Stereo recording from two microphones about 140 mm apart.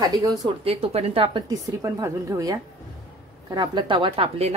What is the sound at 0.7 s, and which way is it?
Speech, 45° right (ahead or behind).